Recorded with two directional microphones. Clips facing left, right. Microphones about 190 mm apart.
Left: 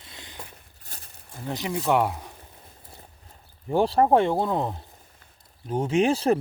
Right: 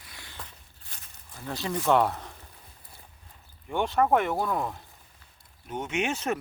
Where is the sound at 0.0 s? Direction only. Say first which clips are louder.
Left 3 dB; 20° left (ahead or behind).